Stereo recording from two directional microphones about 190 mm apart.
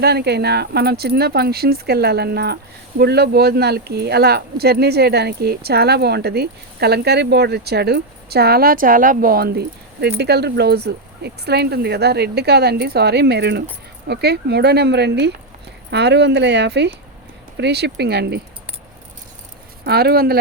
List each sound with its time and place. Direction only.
0.0 s speech: 60° right (ahead or behind)
19.8 s speech: 55° right (ahead or behind)